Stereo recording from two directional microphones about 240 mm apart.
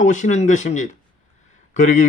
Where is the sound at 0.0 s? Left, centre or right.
Left.